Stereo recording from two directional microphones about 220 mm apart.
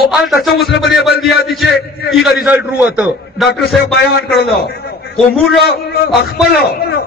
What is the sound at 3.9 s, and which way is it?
Speech, 45° left (ahead or behind).